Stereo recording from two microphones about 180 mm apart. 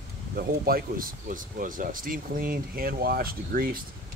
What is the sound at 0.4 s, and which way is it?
Speech, 55° right (ahead or behind).